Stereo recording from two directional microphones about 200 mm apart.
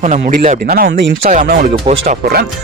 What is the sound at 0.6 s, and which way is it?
Speech, 50° right (ahead or behind).